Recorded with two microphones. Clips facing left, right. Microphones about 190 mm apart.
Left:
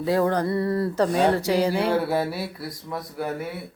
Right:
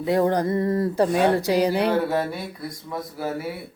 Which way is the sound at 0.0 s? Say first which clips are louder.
Right 1 dB; 20° right (ahead or behind).